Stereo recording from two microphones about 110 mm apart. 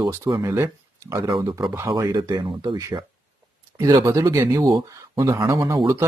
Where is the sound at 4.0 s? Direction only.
30° right (ahead or behind).